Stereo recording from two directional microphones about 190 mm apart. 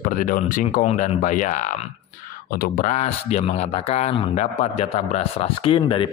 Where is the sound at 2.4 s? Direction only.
50° left (ahead or behind).